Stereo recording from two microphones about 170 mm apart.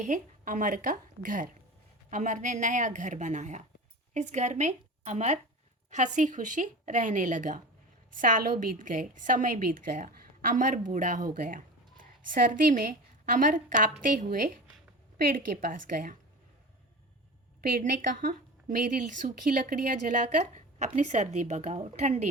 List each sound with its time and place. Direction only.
0.0 s a woman's voice: 50° right (ahead or behind)
15.3 s a woman's voice: 55° right (ahead or behind)
17.6 s a woman's voice: 55° right (ahead or behind)